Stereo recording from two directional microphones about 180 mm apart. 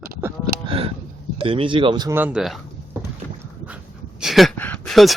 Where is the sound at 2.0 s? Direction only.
10° right (ahead or behind).